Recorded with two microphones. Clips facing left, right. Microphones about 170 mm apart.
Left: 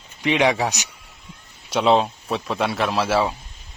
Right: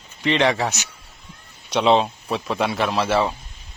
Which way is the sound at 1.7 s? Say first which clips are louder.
Even; centre (ahead or behind).